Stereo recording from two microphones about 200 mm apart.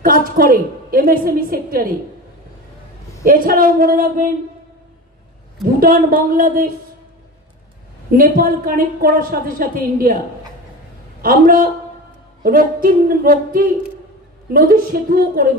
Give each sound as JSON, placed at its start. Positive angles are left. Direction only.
{"t": 0.0, "sound": "a woman's voice", "side_deg": -45}
{"t": 3.3, "sound": "a woman's voice", "side_deg": -45}
{"t": 5.6, "sound": "a woman's voice", "side_deg": -45}
{"t": 8.1, "sound": "a woman's voice", "side_deg": -45}
{"t": 11.2, "sound": "a woman's voice", "side_deg": -45}